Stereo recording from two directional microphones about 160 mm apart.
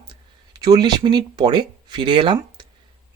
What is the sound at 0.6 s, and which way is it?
Speech, 25° right (ahead or behind).